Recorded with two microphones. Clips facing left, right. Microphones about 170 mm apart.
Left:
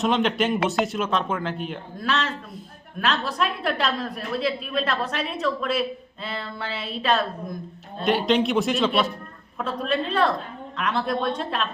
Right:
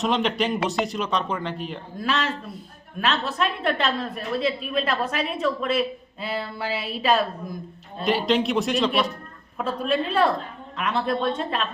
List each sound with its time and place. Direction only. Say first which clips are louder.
0.0 s a woman's voice: left 1 dB; centre (ahead or behind)
6.2 s a sound: right 3 dB; 5° right (ahead or behind)
7.9 s a woman's voice: left 1 dB; centre (ahead or behind)